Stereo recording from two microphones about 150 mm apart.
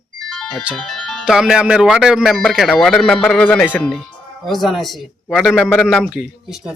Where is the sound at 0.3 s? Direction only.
5° left (ahead or behind).